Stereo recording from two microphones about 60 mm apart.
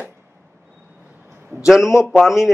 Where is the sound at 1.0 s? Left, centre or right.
Right.